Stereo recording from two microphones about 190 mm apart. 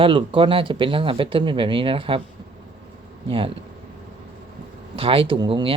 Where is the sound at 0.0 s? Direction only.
25° right (ahead or behind).